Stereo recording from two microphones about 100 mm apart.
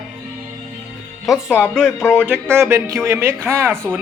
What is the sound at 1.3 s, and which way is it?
Speech, centre (ahead or behind).